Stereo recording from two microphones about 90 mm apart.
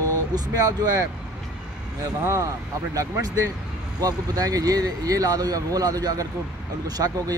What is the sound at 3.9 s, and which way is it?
Speech, 45° right (ahead or behind).